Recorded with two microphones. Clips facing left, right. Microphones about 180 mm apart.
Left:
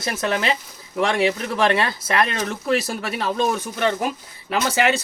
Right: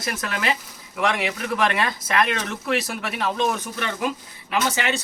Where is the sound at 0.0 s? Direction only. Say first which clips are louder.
Left 4 dB; 25° left (ahead or behind).